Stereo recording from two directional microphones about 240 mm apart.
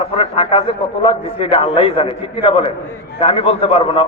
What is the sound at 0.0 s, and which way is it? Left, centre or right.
A man's voice, left.